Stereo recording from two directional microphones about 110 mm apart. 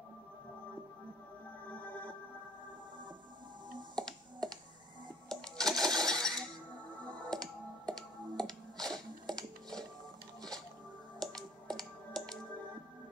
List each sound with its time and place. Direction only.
1.7 s music: 15° left (ahead or behind)
3.9 s computer keyboard: 5° left (ahead or behind)
5.3 s coin: 5° left (ahead or behind)
7.2 s finger snapping: 5° left (ahead or behind)
11.1 s finger snapping: 5° left (ahead or behind)